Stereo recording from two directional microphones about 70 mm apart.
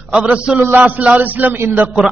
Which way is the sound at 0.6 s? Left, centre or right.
Right.